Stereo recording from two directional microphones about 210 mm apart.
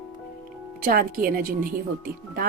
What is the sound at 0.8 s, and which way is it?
Speech, 40° right (ahead or behind).